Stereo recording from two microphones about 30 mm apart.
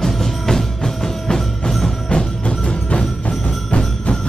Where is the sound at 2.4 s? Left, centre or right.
Left.